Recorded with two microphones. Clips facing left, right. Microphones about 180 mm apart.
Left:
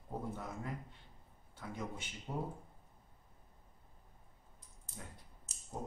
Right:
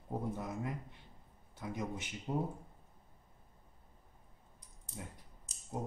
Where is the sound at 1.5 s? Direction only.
20° right (ahead or behind).